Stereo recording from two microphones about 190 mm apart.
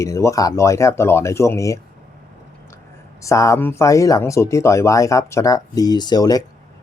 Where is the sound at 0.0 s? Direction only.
15° left (ahead or behind).